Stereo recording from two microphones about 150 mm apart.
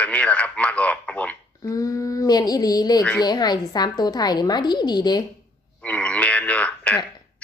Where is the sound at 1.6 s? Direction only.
25° left (ahead or behind).